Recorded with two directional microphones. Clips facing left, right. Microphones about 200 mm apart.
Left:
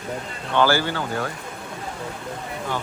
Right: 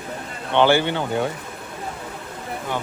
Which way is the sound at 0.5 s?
20° right (ahead or behind).